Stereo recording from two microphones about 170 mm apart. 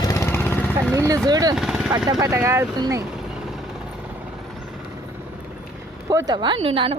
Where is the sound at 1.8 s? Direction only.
25° right (ahead or behind).